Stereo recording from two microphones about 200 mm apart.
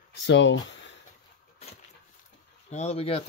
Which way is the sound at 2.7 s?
30° left (ahead or behind).